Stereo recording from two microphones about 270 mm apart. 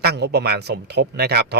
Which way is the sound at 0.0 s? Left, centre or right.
Right.